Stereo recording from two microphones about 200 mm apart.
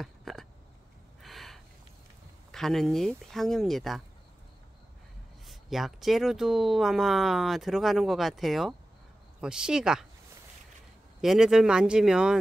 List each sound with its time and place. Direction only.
0.0 s a sound: centre (ahead or behind)
1.2 s gasp: centre (ahead or behind)
2.5 s speech: centre (ahead or behind)
5.5 s speech: centre (ahead or behind)
11.1 s speech: centre (ahead or behind)